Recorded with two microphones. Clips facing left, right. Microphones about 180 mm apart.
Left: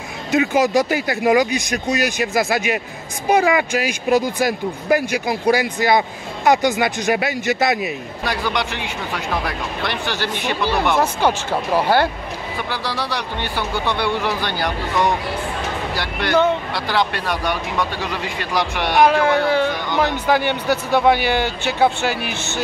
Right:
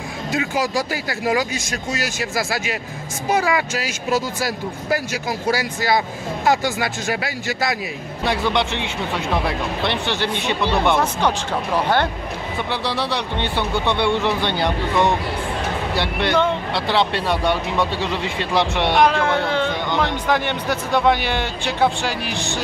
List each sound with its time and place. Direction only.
0.3 s speech: 20° left (ahead or behind)
8.2 s speech: 25° right (ahead or behind)
12.8 s speech: 25° right (ahead or behind)
18.9 s speech: 5° left (ahead or behind)